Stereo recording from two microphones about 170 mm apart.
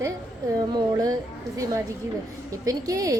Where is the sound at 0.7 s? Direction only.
20° right (ahead or behind).